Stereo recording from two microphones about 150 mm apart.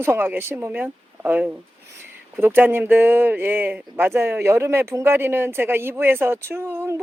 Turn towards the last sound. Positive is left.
turn(degrees=-15)  # may be behind; listen again after turning